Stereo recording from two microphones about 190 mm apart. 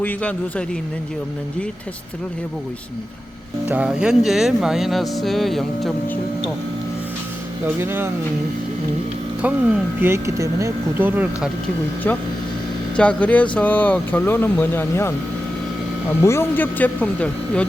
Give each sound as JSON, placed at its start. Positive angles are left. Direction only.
{"t": 0.0, "sound": "speech", "side_deg": 10}
{"t": 3.7, "sound": "speech", "side_deg": -5}
{"t": 7.8, "sound": "speech", "side_deg": -10}
{"t": 9.4, "sound": "speech", "side_deg": -10}
{"t": 12.1, "sound": "speech", "side_deg": 10}